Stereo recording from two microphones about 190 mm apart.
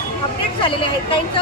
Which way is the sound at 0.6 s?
25° left (ahead or behind).